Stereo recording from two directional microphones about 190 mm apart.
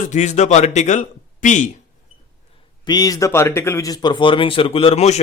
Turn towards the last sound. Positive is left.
turn(degrees=35)  # may be behind; listen again after turning